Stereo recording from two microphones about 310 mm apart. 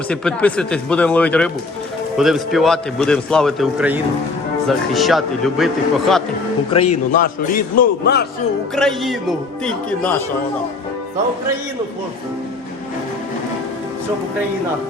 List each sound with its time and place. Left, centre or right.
0.1 s a man's voice: centre
6.7 s a man's voice: left
8.7 s a man's voice: centre